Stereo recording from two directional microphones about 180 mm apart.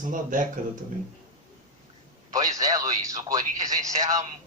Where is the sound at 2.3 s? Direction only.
20° right (ahead or behind).